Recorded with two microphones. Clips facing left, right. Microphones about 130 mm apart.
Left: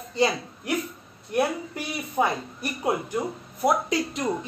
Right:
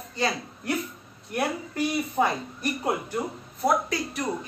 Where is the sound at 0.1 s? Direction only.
20° left (ahead or behind).